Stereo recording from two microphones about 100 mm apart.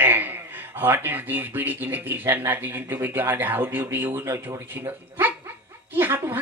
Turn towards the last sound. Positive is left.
turn(degrees=-20)  # may be behind; listen again after turning